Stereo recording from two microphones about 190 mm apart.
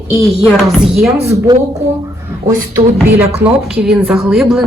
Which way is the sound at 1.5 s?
20° right (ahead or behind).